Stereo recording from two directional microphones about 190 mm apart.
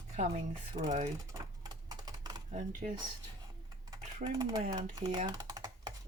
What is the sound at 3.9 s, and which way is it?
Typing, 15° right (ahead or behind).